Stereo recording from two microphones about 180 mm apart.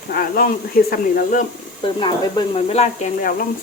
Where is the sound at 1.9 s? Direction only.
25° left (ahead or behind).